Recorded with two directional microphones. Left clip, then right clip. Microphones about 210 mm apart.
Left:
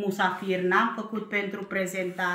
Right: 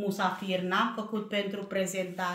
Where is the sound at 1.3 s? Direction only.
40° right (ahead or behind).